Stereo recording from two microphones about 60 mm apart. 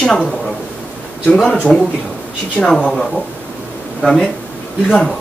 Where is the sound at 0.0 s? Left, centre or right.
Centre.